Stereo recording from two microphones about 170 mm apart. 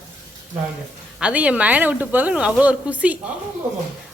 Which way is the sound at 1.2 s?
5° right (ahead or behind).